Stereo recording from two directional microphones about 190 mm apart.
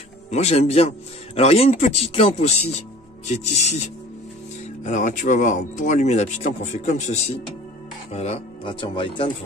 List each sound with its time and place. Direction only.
0.3 s a man's voice: 35° left (ahead or behind)